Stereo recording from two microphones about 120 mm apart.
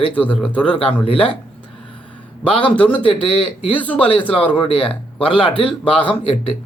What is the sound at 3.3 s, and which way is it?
Speech, 50° left (ahead or behind).